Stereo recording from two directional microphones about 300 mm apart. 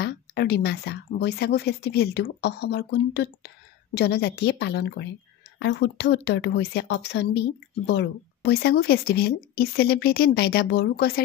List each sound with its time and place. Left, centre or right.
0.0 s speech: left